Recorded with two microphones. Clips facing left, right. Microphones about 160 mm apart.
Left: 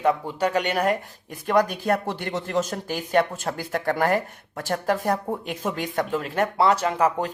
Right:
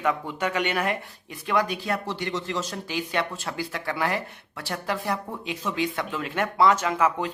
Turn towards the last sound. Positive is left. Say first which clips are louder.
# left 2 dB
turn(degrees=35)  # may be behind; listen again after turning